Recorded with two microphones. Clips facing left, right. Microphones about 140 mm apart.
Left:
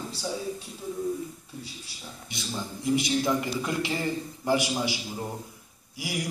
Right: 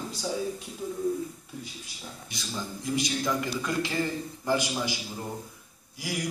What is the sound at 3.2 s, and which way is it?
A man's voice, 20° left (ahead or behind).